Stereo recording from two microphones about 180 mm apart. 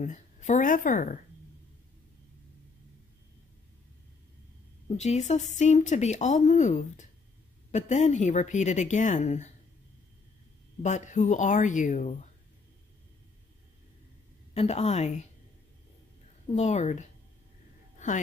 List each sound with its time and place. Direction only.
0.0 s a woman's voice: 45° left (ahead or behind)
4.8 s speech: 40° left (ahead or behind)
10.8 s speech: 40° left (ahead or behind)
14.5 s speech: 35° left (ahead or behind)
16.5 s speech: 40° left (ahead or behind)
17.9 s a sound: 45° left (ahead or behind)